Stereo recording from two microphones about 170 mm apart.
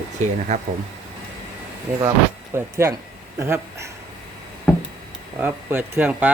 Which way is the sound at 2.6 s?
15° right (ahead or behind).